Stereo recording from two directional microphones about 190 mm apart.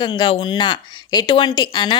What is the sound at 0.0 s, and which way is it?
A woman's voice, 25° left (ahead or behind).